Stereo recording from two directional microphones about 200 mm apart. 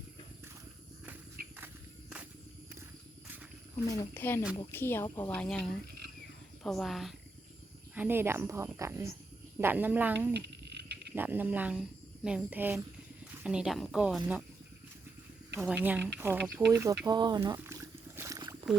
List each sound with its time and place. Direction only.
1.5 s walk: 5° right (ahead or behind)
3.8 s a woman's voice: 10° left (ahead or behind); by 10.2 s 10° right (ahead or behind)
10.3 s a sound: 55° right (ahead or behind)
11.1 s a woman's voice: 10° right (ahead or behind)
15.6 s a woman's voice: 10° right (ahead or behind)
18.2 s a sound: 15° right (ahead or behind)